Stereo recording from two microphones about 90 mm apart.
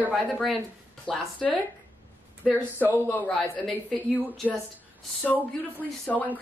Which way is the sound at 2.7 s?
20° left (ahead or behind).